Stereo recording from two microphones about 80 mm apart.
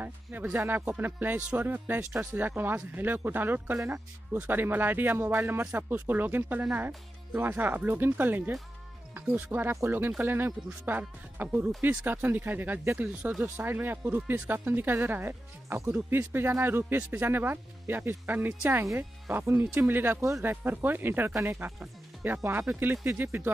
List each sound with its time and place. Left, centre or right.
0.0 s speech: right
20.6 s speech: right